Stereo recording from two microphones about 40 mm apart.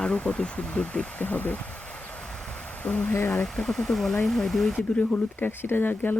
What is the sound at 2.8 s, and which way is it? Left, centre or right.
Speech, left.